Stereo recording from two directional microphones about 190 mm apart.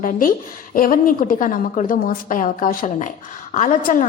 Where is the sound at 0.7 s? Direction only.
45° left (ahead or behind).